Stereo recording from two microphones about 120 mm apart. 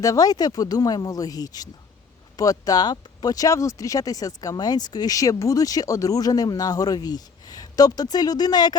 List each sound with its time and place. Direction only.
0.0 s speech: 30° left (ahead or behind)